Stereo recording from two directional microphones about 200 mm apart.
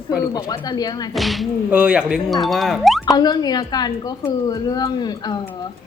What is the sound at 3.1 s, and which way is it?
A woman's voice, 20° left (ahead or behind).